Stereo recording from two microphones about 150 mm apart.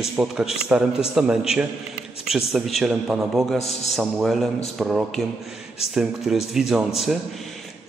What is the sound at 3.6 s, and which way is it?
Speech, 45° left (ahead or behind).